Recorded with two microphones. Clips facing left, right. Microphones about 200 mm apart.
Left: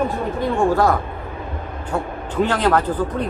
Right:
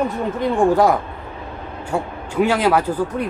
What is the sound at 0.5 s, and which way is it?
Speech, 15° right (ahead or behind).